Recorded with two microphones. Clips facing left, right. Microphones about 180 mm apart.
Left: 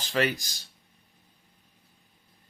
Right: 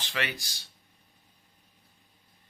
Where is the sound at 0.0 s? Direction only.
40° left (ahead or behind).